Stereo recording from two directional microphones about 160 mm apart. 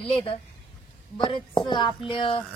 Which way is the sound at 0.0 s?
35° left (ahead or behind).